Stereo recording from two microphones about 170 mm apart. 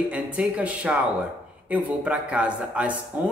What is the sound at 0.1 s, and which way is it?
Speech, 10° right (ahead or behind).